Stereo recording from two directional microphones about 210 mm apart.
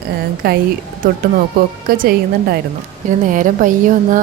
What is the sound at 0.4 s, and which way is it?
Speech, 45° right (ahead or behind).